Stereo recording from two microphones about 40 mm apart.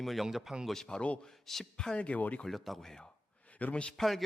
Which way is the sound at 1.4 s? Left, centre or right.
Centre.